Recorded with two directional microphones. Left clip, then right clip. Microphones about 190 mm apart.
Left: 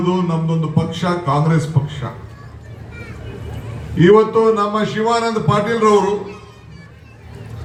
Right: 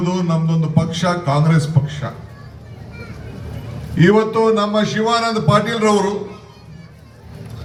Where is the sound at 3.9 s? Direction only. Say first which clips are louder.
Left 3 dB; 25° right (ahead or behind).